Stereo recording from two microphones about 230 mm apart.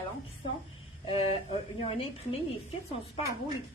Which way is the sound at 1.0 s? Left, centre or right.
Left.